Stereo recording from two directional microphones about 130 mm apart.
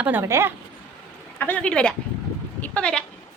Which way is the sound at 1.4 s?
10° left (ahead or behind).